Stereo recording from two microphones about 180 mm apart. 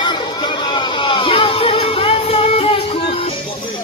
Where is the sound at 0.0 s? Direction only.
25° left (ahead or behind).